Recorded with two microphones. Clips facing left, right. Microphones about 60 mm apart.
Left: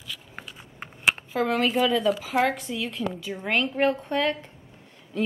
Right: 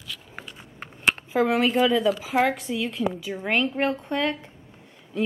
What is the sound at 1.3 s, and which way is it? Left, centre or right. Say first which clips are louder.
A woman's voice: right 5 dB; centre.